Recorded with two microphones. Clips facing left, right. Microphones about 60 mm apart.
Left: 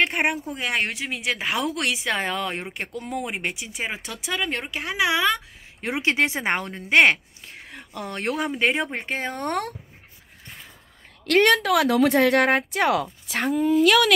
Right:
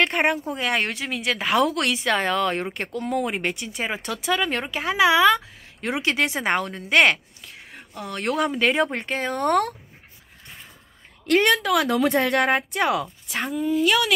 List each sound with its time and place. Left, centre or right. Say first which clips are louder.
0.0 s speech: right 2 dB; centre
5.8 s speech: left 1 dB; left
11.2 s speech: left 1 dB; left
13.7 s speech: left 3 dB; left